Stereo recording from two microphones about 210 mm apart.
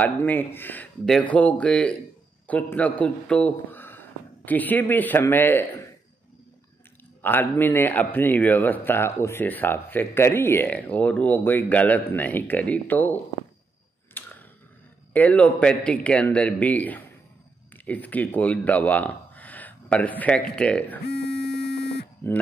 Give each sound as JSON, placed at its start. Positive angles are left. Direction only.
{"t": 0.0, "sound": "a man's voice", "side_deg": 10}
{"t": 7.2, "sound": "a man's voice", "side_deg": 10}
{"t": 14.2, "sound": "a sound", "side_deg": 10}
{"t": 15.1, "sound": "a man's voice", "side_deg": 5}
{"t": 21.1, "sound": "buzzer", "side_deg": 50}